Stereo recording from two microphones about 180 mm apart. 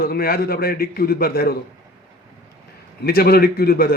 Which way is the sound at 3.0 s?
55° left (ahead or behind).